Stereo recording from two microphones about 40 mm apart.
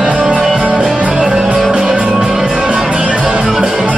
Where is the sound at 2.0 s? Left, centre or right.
Right.